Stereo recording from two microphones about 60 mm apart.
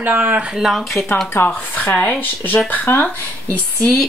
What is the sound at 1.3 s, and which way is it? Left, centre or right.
Speech, left.